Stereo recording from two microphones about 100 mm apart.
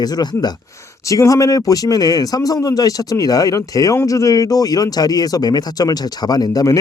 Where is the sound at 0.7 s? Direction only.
30° left (ahead or behind).